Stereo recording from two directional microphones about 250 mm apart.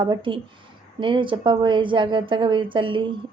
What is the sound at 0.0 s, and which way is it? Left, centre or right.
A woman's voice, centre.